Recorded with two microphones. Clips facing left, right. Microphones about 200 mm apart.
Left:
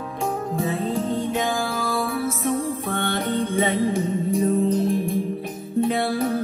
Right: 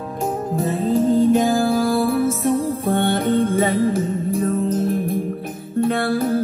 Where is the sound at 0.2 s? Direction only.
Centre (ahead or behind).